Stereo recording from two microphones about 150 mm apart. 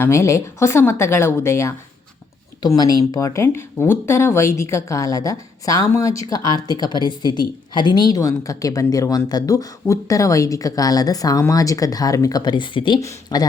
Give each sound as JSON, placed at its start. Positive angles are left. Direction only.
{"t": 0.0, "sound": "a woman's voice", "side_deg": 20}